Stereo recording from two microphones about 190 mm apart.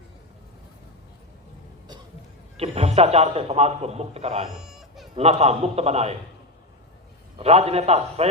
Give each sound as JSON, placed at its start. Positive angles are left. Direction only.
{"t": 2.6, "sound": "a man's voice", "side_deg": -35}
{"t": 4.4, "sound": "a sound", "side_deg": 0}
{"t": 5.1, "sound": "a man's voice", "side_deg": -35}
{"t": 7.3, "sound": "a man's voice", "side_deg": -35}